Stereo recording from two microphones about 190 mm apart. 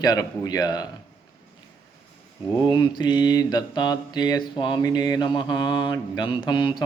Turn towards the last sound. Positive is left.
turn(degrees=25)  # may be behind; listen again after turning